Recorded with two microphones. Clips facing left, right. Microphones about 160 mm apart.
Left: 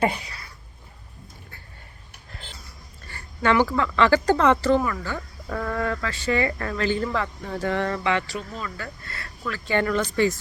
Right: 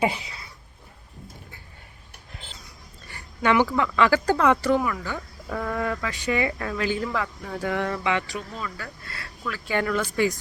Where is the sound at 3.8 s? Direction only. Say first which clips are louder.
Left 1 dB; 10° right (ahead or behind).